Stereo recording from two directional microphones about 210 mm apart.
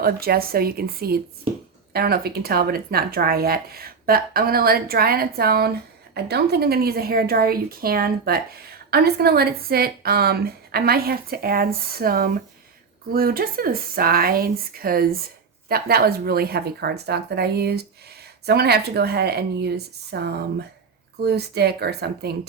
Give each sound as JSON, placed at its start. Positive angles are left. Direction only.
{"t": 0.0, "sound": "speech", "side_deg": -45}